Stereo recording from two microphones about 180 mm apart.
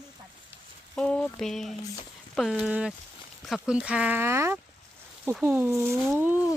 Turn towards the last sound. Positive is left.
turn(degrees=-10)  # may be behind; listen again after turning